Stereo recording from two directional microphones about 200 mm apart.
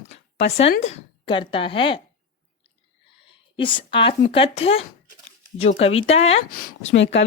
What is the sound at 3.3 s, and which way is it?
Speech, 25° left (ahead or behind).